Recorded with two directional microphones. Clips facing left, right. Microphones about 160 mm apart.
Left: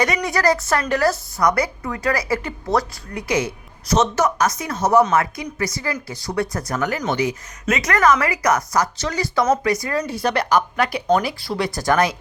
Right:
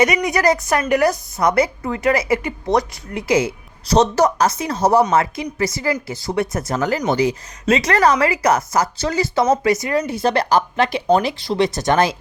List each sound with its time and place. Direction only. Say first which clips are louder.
0.0 s a woman's voice: right 3 dB; 20° right (ahead or behind)